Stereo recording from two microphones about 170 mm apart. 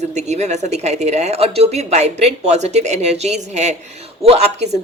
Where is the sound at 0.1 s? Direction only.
40° right (ahead or behind).